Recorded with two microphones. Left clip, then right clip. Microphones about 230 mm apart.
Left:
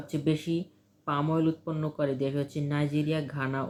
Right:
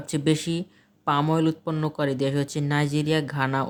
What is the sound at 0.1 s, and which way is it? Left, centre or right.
Speech, right.